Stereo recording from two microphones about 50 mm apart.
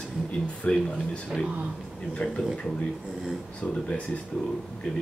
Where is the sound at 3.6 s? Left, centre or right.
Left.